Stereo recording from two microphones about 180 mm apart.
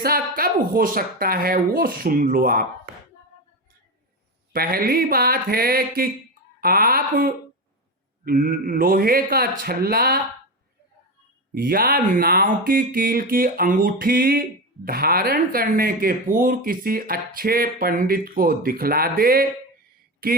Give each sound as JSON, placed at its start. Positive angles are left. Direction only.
{"t": 0.0, "sound": "speech", "side_deg": -55}
{"t": 4.5, "sound": "speech", "side_deg": -55}
{"t": 11.5, "sound": "speech", "side_deg": -55}